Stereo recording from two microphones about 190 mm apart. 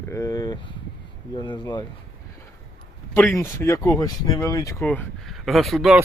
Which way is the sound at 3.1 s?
10° left (ahead or behind).